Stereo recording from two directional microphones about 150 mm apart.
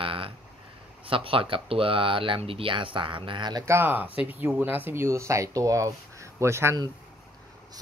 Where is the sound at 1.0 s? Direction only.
35° right (ahead or behind).